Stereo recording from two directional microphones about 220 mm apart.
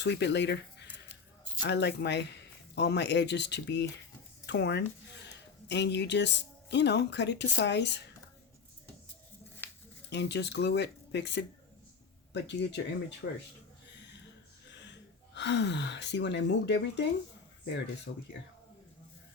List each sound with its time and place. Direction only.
0.0 s speech: 50° left (ahead or behind)
9.6 s a sound: 10° left (ahead or behind)
10.1 s speech: 50° left (ahead or behind)
15.4 s speech: 55° left (ahead or behind)
18.1 s speech: 55° left (ahead or behind)